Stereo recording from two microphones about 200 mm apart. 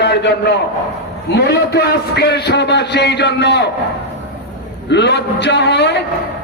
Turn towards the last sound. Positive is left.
turn(degrees=60)  # may be behind; listen again after turning